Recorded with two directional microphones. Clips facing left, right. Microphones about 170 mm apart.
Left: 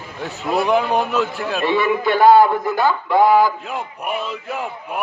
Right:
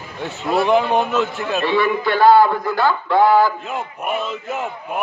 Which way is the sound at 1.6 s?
15° left (ahead or behind).